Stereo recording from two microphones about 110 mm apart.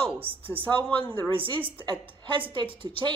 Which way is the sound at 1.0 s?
50° right (ahead or behind).